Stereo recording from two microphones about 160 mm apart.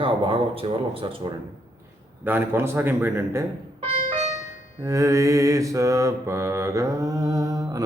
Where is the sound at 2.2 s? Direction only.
15° right (ahead or behind).